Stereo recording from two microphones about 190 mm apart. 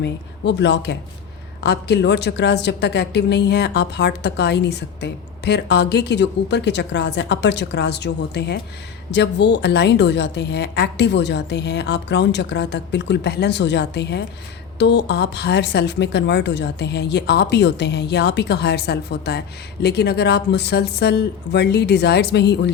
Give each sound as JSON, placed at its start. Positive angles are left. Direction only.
{"t": 0.0, "sound": "a woman's voice", "side_deg": 65}